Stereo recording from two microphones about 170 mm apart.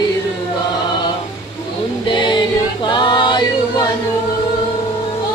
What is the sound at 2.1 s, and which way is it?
Choir, 30° left (ahead or behind).